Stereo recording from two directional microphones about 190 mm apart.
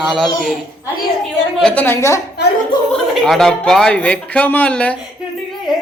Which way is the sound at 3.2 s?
5° left (ahead or behind).